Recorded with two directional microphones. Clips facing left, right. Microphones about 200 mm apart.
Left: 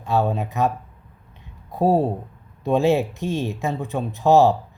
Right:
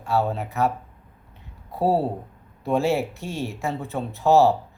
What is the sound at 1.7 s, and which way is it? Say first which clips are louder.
Speech: left 3 dB; 15° left (ahead or behind).